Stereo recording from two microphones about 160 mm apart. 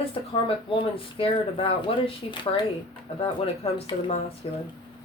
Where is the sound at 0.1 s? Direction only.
35° left (ahead or behind).